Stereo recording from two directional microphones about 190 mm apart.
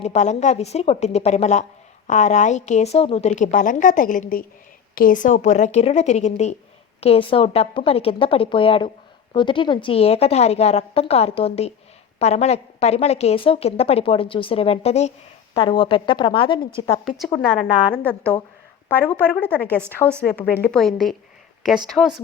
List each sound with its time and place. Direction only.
0.0 s a woman's voice: 35° left (ahead or behind)
17.1 s a woman's voice: 5° left (ahead or behind)